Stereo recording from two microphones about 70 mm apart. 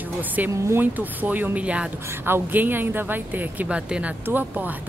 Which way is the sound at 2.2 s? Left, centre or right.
Right.